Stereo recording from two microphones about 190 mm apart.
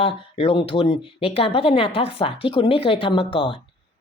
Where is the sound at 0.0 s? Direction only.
30° left (ahead or behind).